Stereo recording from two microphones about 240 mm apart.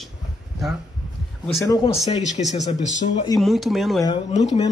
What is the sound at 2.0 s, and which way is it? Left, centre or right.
Speech, left.